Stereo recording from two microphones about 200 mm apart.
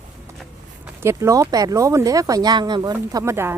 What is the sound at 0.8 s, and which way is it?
Speech, 15° right (ahead or behind).